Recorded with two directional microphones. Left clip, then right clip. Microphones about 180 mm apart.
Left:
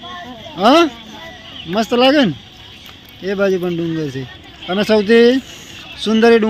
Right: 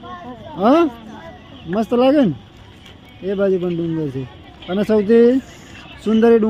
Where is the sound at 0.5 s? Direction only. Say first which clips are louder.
Left 3 dB; 5° right (ahead or behind).